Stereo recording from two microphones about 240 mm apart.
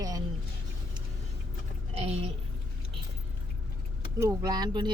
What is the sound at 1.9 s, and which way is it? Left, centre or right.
Speech, right.